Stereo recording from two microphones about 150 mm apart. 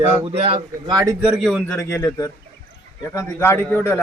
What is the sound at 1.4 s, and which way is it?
Speech, 5° left (ahead or behind).